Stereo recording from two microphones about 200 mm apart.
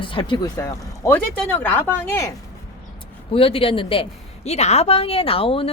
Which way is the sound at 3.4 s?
30° left (ahead or behind).